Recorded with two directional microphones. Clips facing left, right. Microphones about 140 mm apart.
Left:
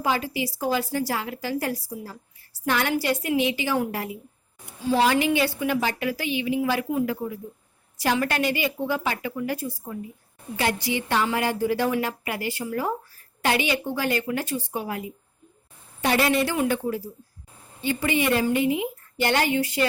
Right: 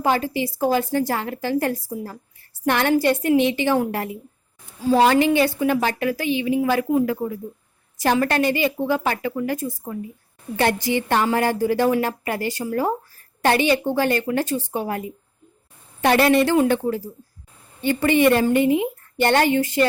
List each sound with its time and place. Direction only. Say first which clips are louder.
0.4 s a woman's voice: right 5 dB; 50° right (ahead or behind)
4.9 s a woman's voice: right 5 dB; 45° right (ahead or behind)